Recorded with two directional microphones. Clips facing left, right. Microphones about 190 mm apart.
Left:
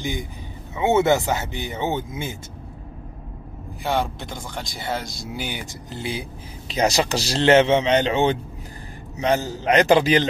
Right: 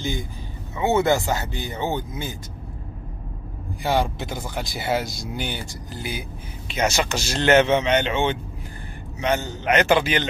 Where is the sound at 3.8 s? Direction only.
Centre (ahead or behind).